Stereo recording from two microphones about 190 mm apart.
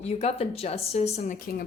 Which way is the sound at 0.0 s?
35° left (ahead or behind).